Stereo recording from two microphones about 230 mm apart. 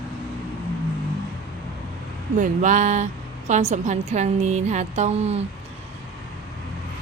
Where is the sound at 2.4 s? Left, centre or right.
Right.